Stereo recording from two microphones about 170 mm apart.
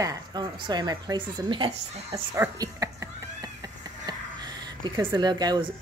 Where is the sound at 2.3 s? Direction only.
20° right (ahead or behind).